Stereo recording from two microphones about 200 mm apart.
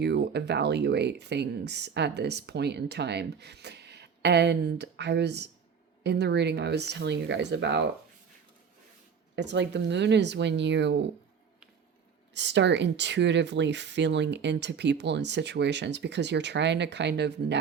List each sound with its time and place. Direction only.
0.0 s speech: 55° right (ahead or behind)
9.3 s speech: 60° right (ahead or behind)
12.3 s speech: 60° right (ahead or behind)